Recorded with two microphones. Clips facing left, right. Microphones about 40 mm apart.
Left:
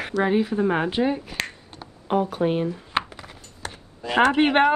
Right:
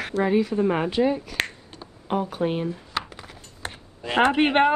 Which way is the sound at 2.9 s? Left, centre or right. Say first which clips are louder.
Left 5 dB; left.